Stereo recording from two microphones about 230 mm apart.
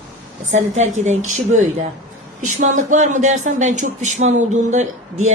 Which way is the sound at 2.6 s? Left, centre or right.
Right.